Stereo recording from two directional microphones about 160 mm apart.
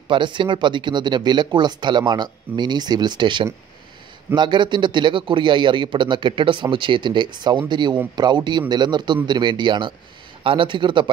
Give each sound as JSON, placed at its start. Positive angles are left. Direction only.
{"t": 0.1, "sound": "a man's voice", "side_deg": -30}